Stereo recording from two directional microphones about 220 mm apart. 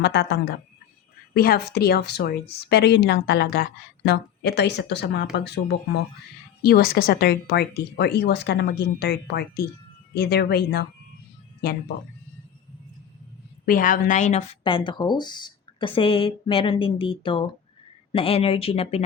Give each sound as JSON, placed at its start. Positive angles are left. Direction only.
{"t": 0.0, "sound": "speech", "side_deg": 45}
{"t": 13.7, "sound": "a woman's voice", "side_deg": 40}